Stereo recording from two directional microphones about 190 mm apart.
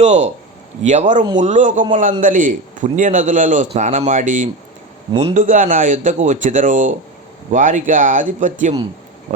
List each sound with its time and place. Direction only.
0.0 s a man's voice: 35° right (ahead or behind)